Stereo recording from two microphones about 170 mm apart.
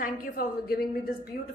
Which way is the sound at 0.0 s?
60° left (ahead or behind).